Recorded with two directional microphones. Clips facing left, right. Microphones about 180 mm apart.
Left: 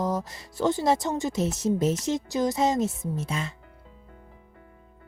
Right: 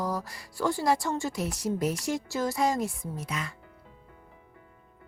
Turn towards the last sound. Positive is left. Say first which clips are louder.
# left 5 dB
turn(degrees=25)  # may be behind; listen again after turning